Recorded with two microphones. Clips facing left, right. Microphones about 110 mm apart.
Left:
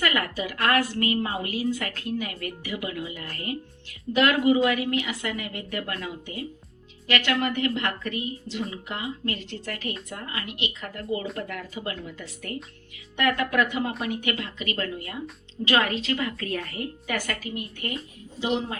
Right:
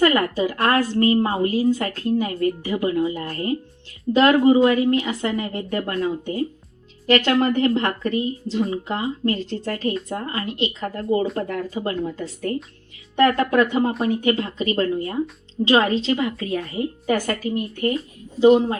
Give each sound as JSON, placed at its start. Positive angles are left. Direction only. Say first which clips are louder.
{"t": 0.0, "sound": "a woman's voice", "louder": "right 9 dB", "side_deg": -30}
{"t": 17.2, "sound": "a woman's voice", "louder": "right 8 dB", "side_deg": -40}